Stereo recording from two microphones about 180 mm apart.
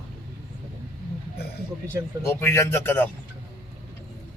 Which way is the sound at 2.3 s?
15° left (ahead or behind).